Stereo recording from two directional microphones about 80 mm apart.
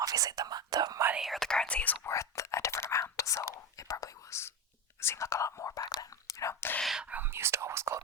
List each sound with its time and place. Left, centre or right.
0.0 s speech: right
1.1 s speech: centre
2.0 s whispering: left
6.8 s whispering: centre
7.1 s whispering: right